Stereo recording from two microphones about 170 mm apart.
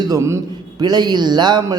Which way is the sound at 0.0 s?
20° right (ahead or behind).